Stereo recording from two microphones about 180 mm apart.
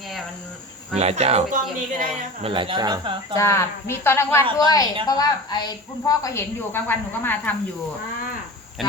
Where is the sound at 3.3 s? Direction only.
15° left (ahead or behind).